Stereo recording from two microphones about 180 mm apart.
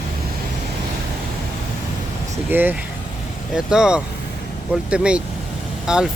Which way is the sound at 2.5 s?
10° right (ahead or behind).